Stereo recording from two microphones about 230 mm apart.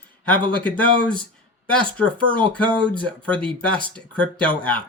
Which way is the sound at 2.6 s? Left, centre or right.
Right.